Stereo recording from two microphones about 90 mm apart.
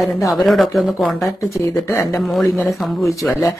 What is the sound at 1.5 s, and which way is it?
Speech, 25° left (ahead or behind).